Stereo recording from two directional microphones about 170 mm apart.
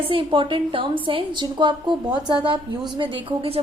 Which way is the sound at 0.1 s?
30° right (ahead or behind).